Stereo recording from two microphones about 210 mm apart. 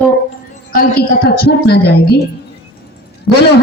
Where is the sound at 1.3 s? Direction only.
50° left (ahead or behind).